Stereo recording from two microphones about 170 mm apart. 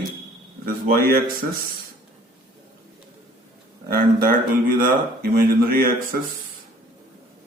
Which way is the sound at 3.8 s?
60° right (ahead or behind).